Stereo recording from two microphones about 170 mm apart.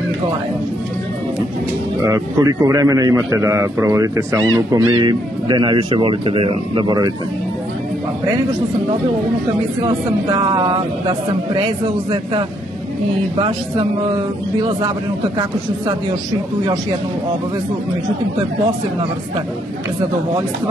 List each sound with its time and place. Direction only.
2.0 s a man's voice: 15° right (ahead or behind)
9.8 s a man's voice: 25° right (ahead or behind)
13.4 s a man's voice: 30° right (ahead or behind)